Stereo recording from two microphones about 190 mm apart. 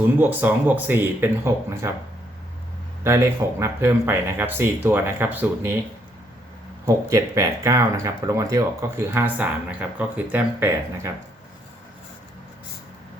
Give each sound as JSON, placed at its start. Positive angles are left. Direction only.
{"t": 0.2, "sound": "speech", "side_deg": -10}
{"t": 3.0, "sound": "speech", "side_deg": -15}
{"t": 6.8, "sound": "speech", "side_deg": -15}